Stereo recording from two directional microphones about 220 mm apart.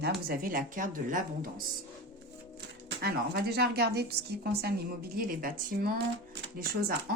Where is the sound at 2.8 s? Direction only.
45° right (ahead or behind).